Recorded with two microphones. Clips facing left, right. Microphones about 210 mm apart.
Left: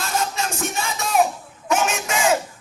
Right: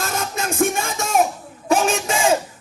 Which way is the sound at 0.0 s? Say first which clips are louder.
Even; 50° right (ahead or behind).